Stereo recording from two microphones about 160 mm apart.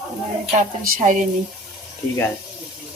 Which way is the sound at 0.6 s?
55° right (ahead or behind).